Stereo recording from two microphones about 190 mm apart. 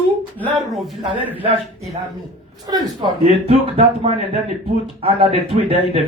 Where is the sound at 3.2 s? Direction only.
30° right (ahead or behind).